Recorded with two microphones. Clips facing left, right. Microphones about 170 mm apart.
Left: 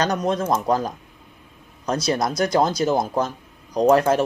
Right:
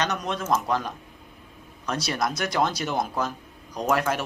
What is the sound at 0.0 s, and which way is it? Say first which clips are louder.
Speech: left 6 dB; 40° left (ahead or behind).